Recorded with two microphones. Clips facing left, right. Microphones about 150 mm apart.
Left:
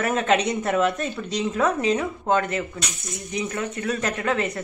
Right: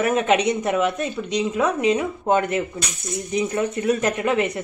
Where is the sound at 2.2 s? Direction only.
20° right (ahead or behind).